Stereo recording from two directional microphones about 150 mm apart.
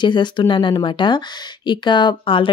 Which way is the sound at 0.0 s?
30° left (ahead or behind).